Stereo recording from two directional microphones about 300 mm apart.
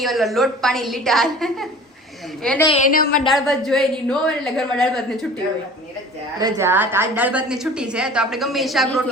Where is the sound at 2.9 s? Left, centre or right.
Left.